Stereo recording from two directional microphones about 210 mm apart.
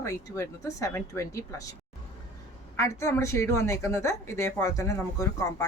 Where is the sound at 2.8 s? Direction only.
15° left (ahead or behind).